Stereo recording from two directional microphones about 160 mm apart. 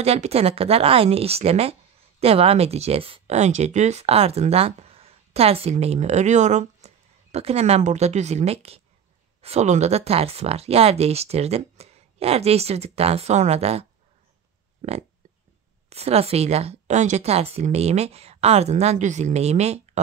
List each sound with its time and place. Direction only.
0.0 s speech: 40° right (ahead or behind)
15.9 s speech: 40° right (ahead or behind)